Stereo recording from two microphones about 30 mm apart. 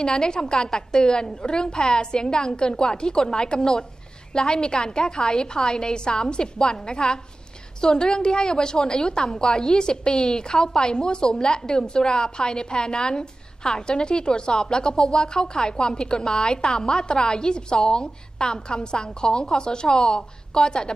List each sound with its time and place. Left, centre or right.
0.0 s a woman's voice: left